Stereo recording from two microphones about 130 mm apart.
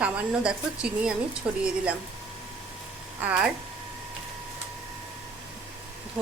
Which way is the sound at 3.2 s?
10° right (ahead or behind).